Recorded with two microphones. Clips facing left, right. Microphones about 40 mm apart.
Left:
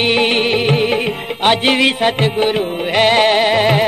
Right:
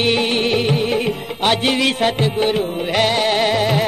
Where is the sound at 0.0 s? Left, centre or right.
Left.